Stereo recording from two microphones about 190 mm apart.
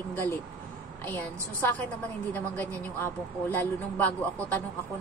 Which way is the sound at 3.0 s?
10° left (ahead or behind).